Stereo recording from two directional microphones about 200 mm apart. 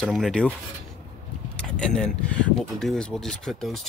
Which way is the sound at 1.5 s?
5° left (ahead or behind).